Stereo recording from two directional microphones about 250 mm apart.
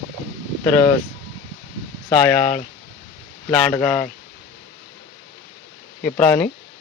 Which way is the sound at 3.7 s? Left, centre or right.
Centre.